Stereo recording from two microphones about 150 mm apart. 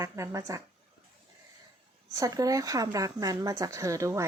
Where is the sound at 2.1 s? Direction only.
25° right (ahead or behind).